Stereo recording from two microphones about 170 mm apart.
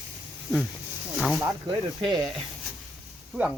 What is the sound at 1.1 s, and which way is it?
Snake, centre (ahead or behind).